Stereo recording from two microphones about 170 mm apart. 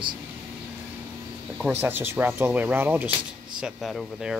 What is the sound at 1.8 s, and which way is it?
Speech, 10° right (ahead or behind).